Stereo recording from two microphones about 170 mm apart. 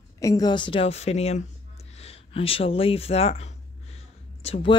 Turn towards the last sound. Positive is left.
turn(degrees=35)  # may be behind; listen again after turning